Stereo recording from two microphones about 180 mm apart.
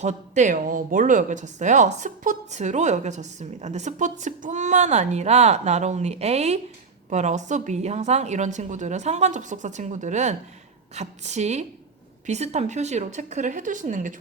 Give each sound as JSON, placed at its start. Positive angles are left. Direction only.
{"t": 0.0, "sound": "speech", "side_deg": -40}